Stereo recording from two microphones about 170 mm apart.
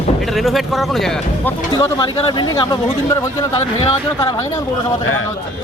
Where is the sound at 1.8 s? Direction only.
25° left (ahead or behind).